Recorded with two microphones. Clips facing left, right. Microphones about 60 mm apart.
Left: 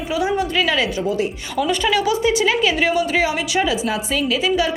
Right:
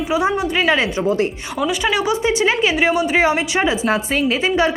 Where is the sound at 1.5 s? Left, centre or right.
Centre.